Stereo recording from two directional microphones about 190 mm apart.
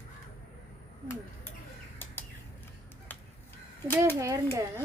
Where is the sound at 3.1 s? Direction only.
10° left (ahead or behind).